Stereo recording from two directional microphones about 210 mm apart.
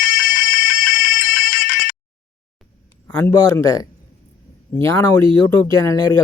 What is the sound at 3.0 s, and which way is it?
Speech, 10° left (ahead or behind).